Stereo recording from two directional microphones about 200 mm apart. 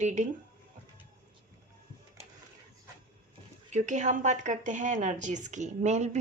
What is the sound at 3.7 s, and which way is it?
A woman's voice, 35° right (ahead or behind).